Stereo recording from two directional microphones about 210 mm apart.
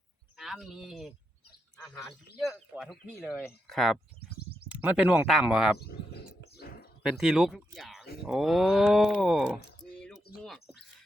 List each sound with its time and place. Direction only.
0.3 s speech: centre (ahead or behind)
5.8 s bird: 50° left (ahead or behind)
6.4 s a sound: 50° left (ahead or behind)
7.0 s speech: centre (ahead or behind)